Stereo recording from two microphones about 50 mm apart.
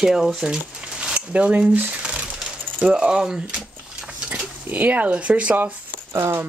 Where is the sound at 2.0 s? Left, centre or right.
Centre.